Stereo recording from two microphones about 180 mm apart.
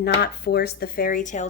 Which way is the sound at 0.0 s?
65° left (ahead or behind).